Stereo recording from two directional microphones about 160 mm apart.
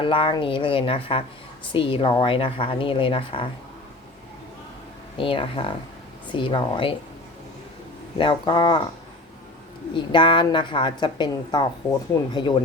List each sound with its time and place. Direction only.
0.0 s speech: 35° left (ahead or behind)
5.1 s speech: 35° left (ahead or behind)
8.2 s a woman's voice: 30° left (ahead or behind)
9.9 s a woman's voice: 30° left (ahead or behind)